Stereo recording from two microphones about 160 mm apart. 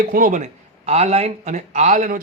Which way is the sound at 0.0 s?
60° right (ahead or behind).